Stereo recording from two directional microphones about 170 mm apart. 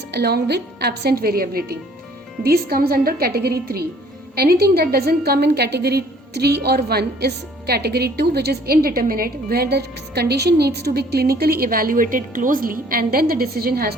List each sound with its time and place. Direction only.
0.1 s a woman's voice: 70° right (ahead or behind)